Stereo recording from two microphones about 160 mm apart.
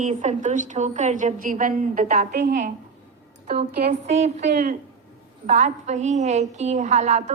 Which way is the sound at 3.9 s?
45° right (ahead or behind).